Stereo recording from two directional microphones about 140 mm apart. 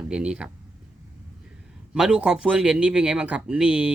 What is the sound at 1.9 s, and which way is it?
Speech, 5° right (ahead or behind).